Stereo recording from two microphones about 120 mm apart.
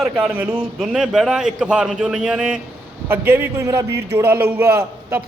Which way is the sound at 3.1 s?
20° right (ahead or behind).